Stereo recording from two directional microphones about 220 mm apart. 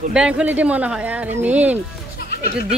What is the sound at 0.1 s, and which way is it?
Speech, 5° right (ahead or behind).